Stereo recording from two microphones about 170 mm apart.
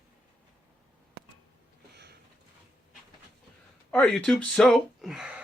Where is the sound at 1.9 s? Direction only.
80° right.